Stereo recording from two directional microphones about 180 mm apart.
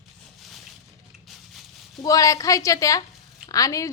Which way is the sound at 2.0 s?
20° left (ahead or behind).